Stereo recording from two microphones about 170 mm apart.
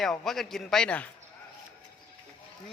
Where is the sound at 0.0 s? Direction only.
Centre (ahead or behind).